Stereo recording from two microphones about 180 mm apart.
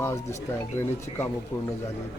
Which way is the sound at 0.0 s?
15° left (ahead or behind).